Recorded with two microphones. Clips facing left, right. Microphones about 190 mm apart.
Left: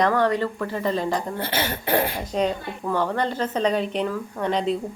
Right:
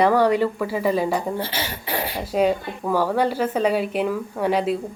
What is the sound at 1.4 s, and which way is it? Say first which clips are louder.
Speech: left 3 dB; 55° left (ahead or behind).